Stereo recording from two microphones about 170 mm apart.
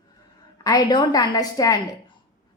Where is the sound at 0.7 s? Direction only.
25° left (ahead or behind).